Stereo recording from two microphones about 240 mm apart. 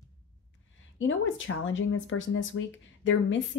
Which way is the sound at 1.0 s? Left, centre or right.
Left.